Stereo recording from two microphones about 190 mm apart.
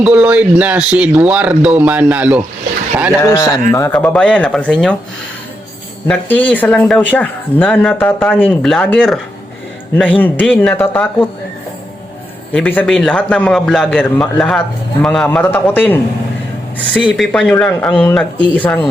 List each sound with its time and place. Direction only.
0.0 s speech: 10° right (ahead or behind)
3.2 s a man's voice: 15° left (ahead or behind)
6.1 s speech: 10° left (ahead or behind)
12.5 s a man's voice: 5° left (ahead or behind)
17.0 s a man's voice: centre (ahead or behind)